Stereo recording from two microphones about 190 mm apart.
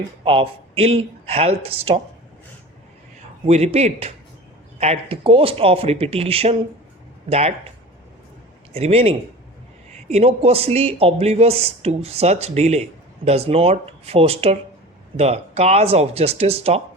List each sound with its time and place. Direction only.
0.3 s speech: 30° right (ahead or behind)
3.4 s speech: 35° right (ahead or behind)
8.7 s speech: 30° right (ahead or behind)